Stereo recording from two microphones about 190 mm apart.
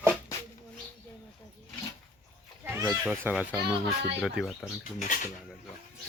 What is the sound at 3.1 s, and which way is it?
Speech, 5° right (ahead or behind).